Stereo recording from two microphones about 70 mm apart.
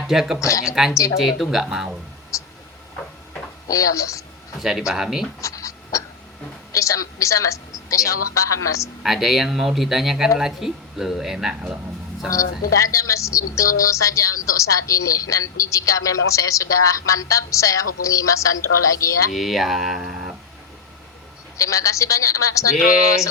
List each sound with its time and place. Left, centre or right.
0.1 s speech: centre
0.3 s a woman's voice: left
0.6 s speech: centre
2.3 s vehicle: left
3.7 s a woman's voice: left
4.6 s speech: centre
5.4 s scratch: left
6.7 s a woman's voice: left
9.0 s speech: centre
12.3 s a woman's voice: left
19.3 s speech: centre
21.6 s a woman's voice: left